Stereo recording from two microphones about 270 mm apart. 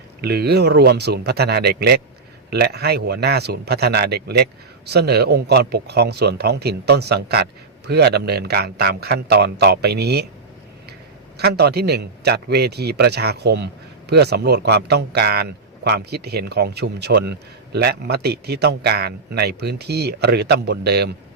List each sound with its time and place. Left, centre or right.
0.2 s a man's voice: right
11.3 s a man's voice: right